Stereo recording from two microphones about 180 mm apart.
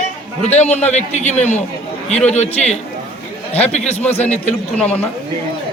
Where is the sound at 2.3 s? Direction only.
40° left (ahead or behind).